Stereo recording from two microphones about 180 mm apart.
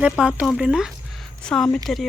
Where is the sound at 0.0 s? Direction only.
5° right (ahead or behind).